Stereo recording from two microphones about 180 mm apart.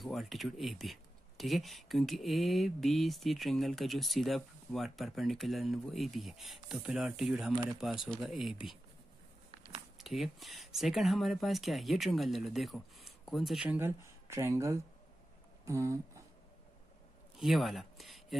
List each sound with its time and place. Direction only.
0.0 s speech: centre (ahead or behind)
9.9 s speech: centre (ahead or behind)
14.2 s speech: 15° right (ahead or behind)
17.4 s speech: centre (ahead or behind)